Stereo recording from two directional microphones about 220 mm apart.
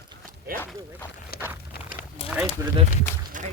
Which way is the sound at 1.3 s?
45° left (ahead or behind).